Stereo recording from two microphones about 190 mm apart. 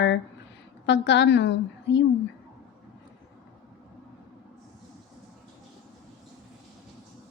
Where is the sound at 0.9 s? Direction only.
65° left (ahead or behind).